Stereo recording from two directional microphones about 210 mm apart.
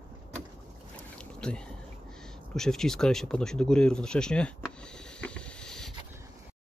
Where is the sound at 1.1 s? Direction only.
5° left (ahead or behind).